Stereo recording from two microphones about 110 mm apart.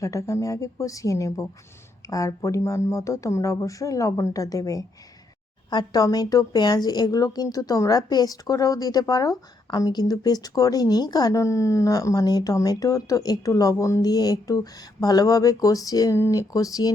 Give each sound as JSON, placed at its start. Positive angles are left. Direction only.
{"t": 0.0, "sound": "a woman's voice", "side_deg": 30}